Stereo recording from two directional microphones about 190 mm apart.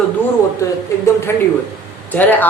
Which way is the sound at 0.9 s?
15° left (ahead or behind).